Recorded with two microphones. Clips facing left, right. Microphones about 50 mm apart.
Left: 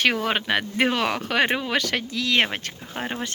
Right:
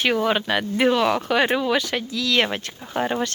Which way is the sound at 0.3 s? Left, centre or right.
Left.